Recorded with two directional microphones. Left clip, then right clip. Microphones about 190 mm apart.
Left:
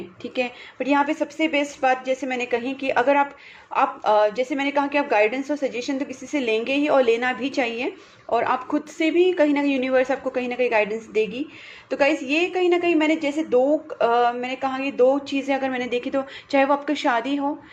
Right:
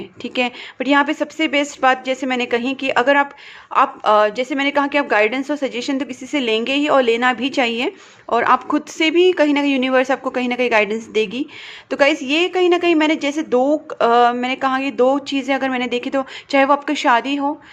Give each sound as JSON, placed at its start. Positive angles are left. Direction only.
{"t": 0.2, "sound": "a woman's voice", "side_deg": -30}